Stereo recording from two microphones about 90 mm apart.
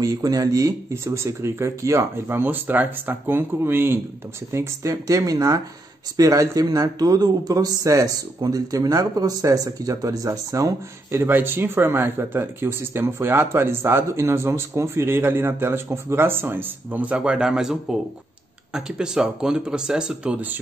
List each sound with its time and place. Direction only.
0.0 s speech: 40° right (ahead or behind); by 20.5 s 15° right (ahead or behind)